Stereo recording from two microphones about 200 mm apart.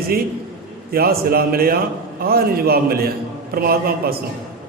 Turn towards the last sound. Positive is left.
turn(degrees=-50)  # may be behind; listen again after turning